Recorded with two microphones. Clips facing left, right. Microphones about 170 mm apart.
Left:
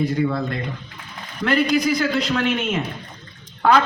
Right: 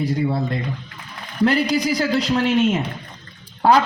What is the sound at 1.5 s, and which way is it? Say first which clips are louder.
Speech: left 1 dB; 35° right (ahead or behind).